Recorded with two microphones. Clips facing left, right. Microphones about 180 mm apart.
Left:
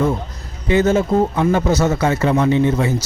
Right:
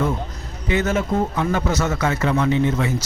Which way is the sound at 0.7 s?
30° left (ahead or behind).